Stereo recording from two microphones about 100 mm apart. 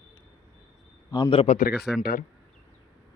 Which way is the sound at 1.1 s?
40° left (ahead or behind).